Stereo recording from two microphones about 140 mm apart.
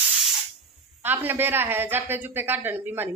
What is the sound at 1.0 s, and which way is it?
A woman's voice, 15° right (ahead or behind).